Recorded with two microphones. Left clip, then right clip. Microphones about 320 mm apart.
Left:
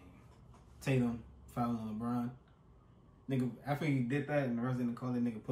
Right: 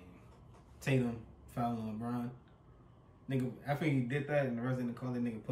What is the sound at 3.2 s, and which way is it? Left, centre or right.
Speech, centre.